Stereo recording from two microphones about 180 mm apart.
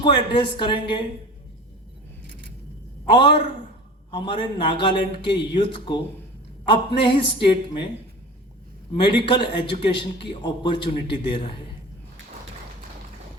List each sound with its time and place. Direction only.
0.0 s a man's voice: 25° left (ahead or behind)
2.2 s a sound: 65° right (ahead or behind)
3.1 s a man's voice: 30° left (ahead or behind)
8.9 s a man's voice: 25° left (ahead or behind)